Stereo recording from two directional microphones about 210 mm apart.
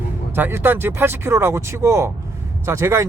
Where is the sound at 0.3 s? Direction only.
10° right (ahead or behind).